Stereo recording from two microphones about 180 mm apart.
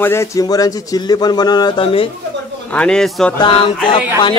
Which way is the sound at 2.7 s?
5° left (ahead or behind).